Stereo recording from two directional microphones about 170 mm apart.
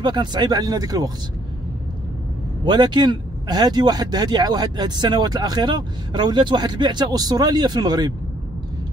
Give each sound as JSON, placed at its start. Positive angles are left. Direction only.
{"t": 0.0, "sound": "speech", "side_deg": -25}
{"t": 2.6, "sound": "speech", "side_deg": -25}